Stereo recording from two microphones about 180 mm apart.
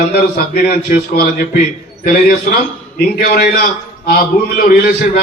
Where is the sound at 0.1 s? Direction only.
60° left (ahead or behind).